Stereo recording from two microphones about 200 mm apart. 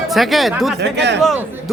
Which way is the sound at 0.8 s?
60° right (ahead or behind).